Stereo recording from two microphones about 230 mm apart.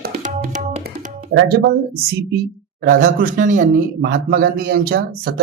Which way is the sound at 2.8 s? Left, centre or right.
Right.